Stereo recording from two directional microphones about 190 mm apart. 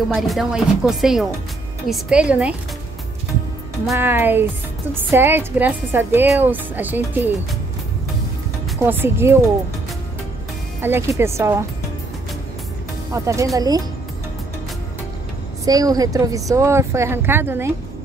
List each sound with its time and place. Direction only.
0.1 s speech: centre (ahead or behind)
3.9 s a woman's voice: 10° right (ahead or behind)
8.8 s a woman's voice: 10° right (ahead or behind)
10.8 s a woman's voice: 15° right (ahead or behind)
13.1 s a woman's voice: 15° right (ahead or behind)
15.6 s a woman's voice: 20° right (ahead or behind)